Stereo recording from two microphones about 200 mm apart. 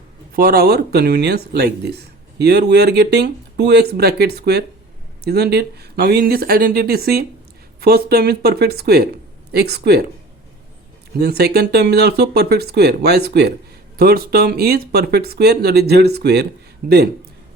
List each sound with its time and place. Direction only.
0.3 s speech: 50° right (ahead or behind)
11.2 s speech: 50° right (ahead or behind)